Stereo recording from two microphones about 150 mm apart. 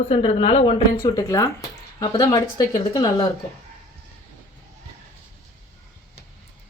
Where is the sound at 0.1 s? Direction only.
40° left (ahead or behind).